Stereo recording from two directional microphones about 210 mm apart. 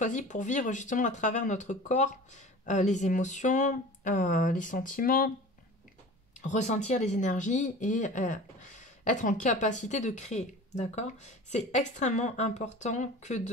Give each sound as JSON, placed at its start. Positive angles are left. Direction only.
{"t": 0.0, "sound": "speech", "side_deg": 35}
{"t": 6.4, "sound": "speech", "side_deg": 35}